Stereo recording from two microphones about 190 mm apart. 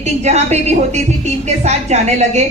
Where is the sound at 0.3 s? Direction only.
35° right (ahead or behind).